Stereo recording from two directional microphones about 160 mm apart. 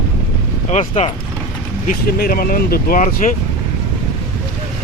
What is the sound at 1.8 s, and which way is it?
Speech, 65° left (ahead or behind).